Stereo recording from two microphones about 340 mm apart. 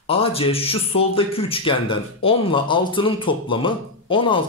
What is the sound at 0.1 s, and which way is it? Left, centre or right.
Speech, centre.